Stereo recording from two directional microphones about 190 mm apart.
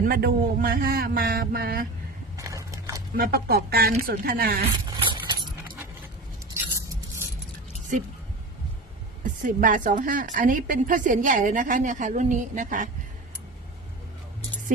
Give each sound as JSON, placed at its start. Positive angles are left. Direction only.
{"t": 0.0, "sound": "a woman's voice", "side_deg": -55}
{"t": 2.3, "sound": "a sound", "side_deg": -15}
{"t": 3.2, "sound": "a woman's voice", "side_deg": -50}
{"t": 4.9, "sound": "keys jangling", "side_deg": -25}
{"t": 9.2, "sound": "a woman's voice", "side_deg": -45}